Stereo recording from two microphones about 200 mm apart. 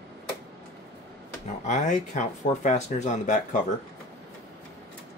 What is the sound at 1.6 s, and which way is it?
Speech, 35° left (ahead or behind).